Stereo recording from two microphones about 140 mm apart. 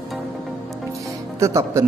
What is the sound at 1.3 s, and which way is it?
Speech, 20° right (ahead or behind).